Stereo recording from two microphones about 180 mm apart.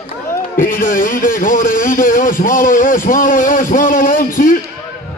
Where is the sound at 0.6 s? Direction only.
50° left (ahead or behind).